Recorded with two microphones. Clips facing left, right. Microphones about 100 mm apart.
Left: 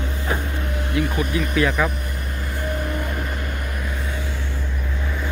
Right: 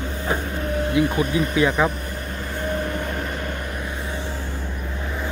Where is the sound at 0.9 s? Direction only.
25° right (ahead or behind).